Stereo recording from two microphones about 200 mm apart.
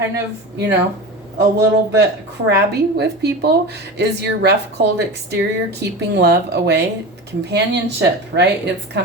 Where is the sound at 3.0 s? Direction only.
55° right (ahead or behind).